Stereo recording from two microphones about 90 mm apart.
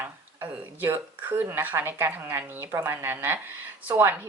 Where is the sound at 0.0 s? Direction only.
25° right (ahead or behind).